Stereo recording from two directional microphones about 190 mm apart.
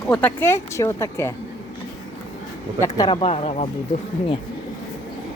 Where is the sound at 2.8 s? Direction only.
20° left (ahead or behind); by 3.7 s 35° left (ahead or behind).